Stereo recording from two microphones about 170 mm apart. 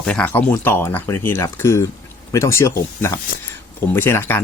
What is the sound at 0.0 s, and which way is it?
A man's voice, 5° left (ahead or behind).